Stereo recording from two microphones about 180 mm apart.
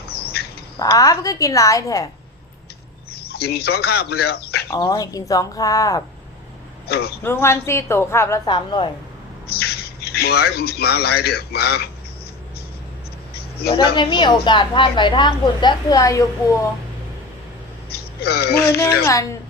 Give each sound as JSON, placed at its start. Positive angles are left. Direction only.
{"t": 0.8, "sound": "a woman's voice", "side_deg": 20}
{"t": 3.2, "sound": "speech", "side_deg": 60}
{"t": 4.7, "sound": "a woman's voice", "side_deg": 20}
{"t": 6.8, "sound": "speech", "side_deg": 60}
{"t": 7.2, "sound": "a woman's voice", "side_deg": 15}
{"t": 8.4, "sound": "a woman's voice", "side_deg": 25}
{"t": 9.5, "sound": "speech", "side_deg": 60}
{"t": 13.7, "sound": "a woman's voice", "side_deg": 25}
{"t": 17.8, "sound": "a sound", "side_deg": 60}
{"t": 19.0, "sound": "a woman's voice", "side_deg": 15}